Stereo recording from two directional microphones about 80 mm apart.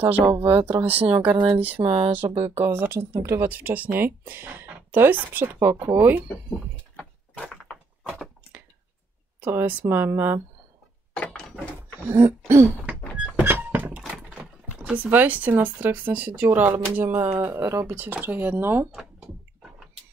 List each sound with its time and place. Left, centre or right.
0.3 s speech: right
3.4 s speech: right
7.0 s door: centre
9.4 s speech: right
11.1 s gears: centre
12.1 s throat clearing: right
13.4 s thunk: right
14.1 s speech: centre
17.6 s throat clearing: right
17.9 s speech: right
18.9 s a sound: centre